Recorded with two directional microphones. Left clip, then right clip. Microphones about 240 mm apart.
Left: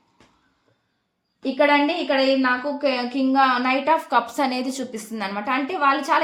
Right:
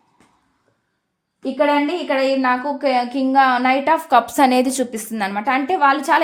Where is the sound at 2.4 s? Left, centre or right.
Right.